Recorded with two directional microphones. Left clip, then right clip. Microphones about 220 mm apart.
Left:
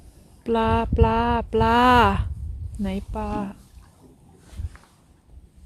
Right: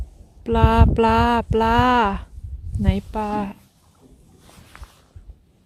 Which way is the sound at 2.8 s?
20° right (ahead or behind).